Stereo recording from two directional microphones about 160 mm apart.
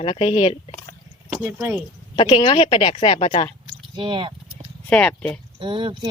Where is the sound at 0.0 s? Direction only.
35° left (ahead or behind).